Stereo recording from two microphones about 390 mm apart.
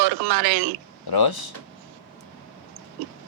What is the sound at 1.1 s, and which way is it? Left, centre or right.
Speech, left.